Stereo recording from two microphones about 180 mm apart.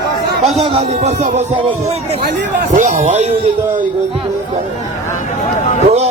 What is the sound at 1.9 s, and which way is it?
Speech, 35° right (ahead or behind).